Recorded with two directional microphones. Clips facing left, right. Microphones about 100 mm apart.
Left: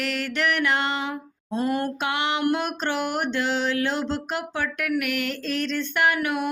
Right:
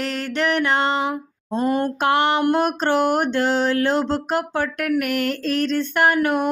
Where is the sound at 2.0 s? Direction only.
45° right (ahead or behind).